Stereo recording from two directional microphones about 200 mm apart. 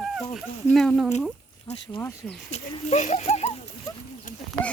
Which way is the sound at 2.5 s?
35° left (ahead or behind).